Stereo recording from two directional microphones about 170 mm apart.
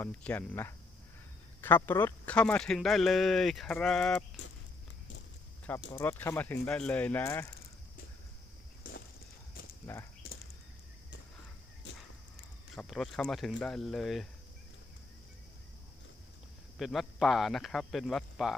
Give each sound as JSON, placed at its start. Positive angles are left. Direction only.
{"t": 0.0, "sound": "speech", "side_deg": 10}
{"t": 6.0, "sound": "speech", "side_deg": 15}
{"t": 9.8, "sound": "speech", "side_deg": 15}
{"t": 12.7, "sound": "speech", "side_deg": 5}
{"t": 16.7, "sound": "speech", "side_deg": 0}